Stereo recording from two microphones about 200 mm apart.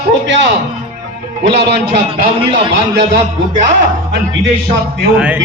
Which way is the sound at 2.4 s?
25° right (ahead or behind).